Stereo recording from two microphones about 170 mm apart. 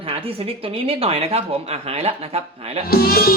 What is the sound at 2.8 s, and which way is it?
Speech, 60° left (ahead or behind).